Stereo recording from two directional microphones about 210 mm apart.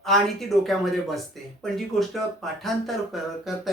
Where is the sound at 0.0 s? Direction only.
Centre (ahead or behind).